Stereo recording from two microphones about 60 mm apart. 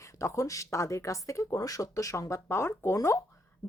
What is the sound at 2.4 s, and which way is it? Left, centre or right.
Speech, left.